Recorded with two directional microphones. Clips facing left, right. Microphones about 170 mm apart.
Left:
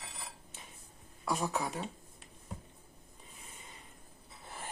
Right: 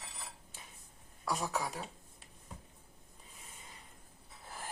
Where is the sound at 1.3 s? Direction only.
Centre (ahead or behind).